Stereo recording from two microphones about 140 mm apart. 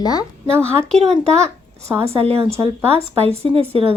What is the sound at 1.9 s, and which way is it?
Speech, 20° right (ahead or behind).